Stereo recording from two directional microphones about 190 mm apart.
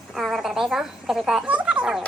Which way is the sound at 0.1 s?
Centre (ahead or behind).